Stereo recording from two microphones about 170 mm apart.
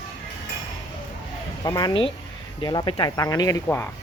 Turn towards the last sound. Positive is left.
turn(degrees=15)  # may be behind; listen again after turning